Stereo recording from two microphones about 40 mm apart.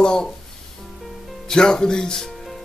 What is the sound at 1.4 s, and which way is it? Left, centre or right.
Speech, centre.